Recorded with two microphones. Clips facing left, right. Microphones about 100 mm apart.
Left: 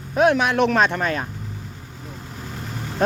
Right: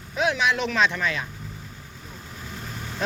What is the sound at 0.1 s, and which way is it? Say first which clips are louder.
Speech: left 6 dB; 50° left (ahead or behind).